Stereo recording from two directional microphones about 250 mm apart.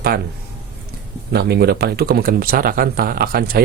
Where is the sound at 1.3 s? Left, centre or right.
Right.